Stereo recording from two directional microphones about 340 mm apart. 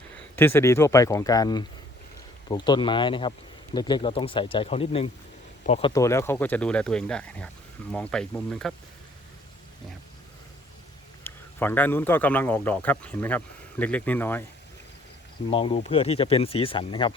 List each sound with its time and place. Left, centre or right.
0.3 s speech: centre
11.2 s speech: centre
15.4 s speech: centre